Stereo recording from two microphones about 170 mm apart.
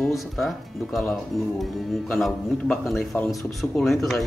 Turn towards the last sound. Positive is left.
turn(degrees=0)  # may be behind; listen again after turning